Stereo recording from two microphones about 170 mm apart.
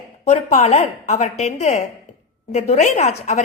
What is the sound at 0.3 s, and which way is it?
A woman's voice, 40° left (ahead or behind).